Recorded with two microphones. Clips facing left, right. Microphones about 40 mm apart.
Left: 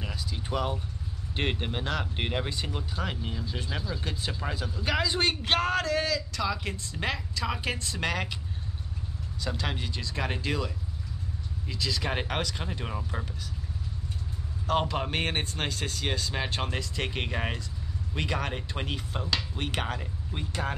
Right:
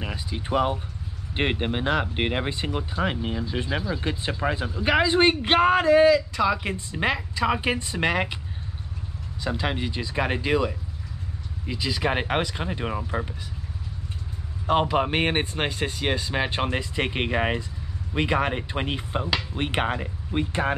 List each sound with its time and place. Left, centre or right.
0.0 s a sound: right
1.3 s speech: right
9.4 s speech: centre
14.7 s speech: centre